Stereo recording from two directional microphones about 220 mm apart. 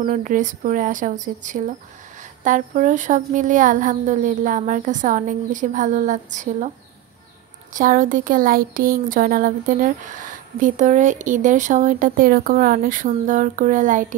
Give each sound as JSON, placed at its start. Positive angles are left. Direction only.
{"t": 0.0, "sound": "speech", "side_deg": -35}
{"t": 7.7, "sound": "speech", "side_deg": -35}